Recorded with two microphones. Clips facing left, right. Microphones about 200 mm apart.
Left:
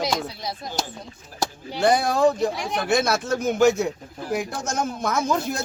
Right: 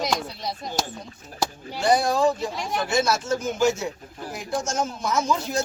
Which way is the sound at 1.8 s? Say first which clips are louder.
Left 1 dB; 55° left (ahead or behind).